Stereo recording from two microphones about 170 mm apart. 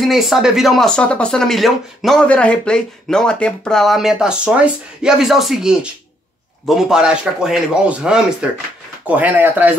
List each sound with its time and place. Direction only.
0.0 s speech: centre (ahead or behind)